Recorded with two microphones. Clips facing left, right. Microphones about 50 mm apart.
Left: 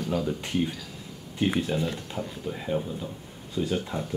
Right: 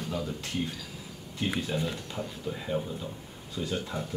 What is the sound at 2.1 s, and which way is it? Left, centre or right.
Speech, centre.